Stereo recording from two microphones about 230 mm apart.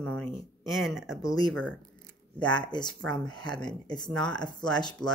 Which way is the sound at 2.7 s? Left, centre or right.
Centre.